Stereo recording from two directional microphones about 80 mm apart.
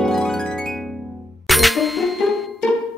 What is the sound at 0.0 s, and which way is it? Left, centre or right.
Music, centre.